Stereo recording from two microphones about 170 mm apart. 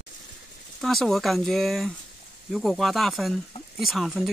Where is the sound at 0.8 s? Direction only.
Centre (ahead or behind).